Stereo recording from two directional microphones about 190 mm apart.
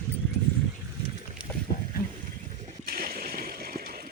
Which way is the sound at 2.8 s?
50° right (ahead or behind).